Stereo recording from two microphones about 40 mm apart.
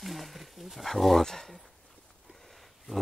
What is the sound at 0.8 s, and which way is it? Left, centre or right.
Speech, centre.